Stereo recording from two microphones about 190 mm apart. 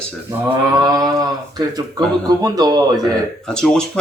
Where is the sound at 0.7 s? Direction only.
20° right (ahead or behind).